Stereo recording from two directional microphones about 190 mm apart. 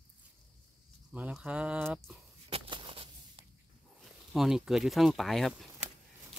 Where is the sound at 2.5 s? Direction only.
25° right (ahead or behind).